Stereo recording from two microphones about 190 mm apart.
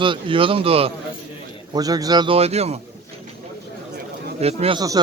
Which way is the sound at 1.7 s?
20° right (ahead or behind).